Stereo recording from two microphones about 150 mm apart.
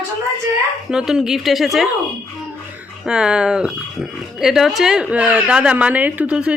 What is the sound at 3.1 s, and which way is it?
A woman's voice, 5° right (ahead or behind).